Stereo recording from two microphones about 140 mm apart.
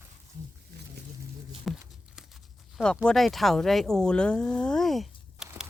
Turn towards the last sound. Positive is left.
turn(degrees=0)  # may be behind; listen again after turning